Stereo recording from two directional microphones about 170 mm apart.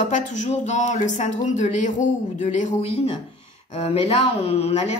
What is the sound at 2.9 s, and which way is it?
Speech, 35° left (ahead or behind).